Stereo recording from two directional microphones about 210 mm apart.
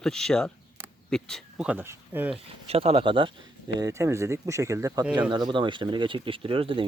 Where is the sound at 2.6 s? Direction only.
30° right (ahead or behind).